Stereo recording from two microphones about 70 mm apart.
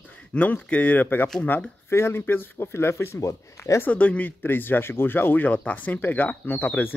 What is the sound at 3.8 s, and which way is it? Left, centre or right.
Speech, centre.